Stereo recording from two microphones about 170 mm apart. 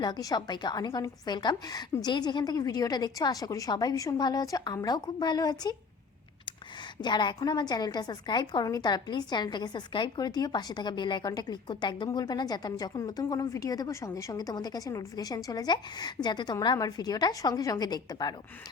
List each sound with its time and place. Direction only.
0.0 s a woman's voice: 25° left (ahead or behind)
7.0 s a woman's voice: 25° left (ahead or behind)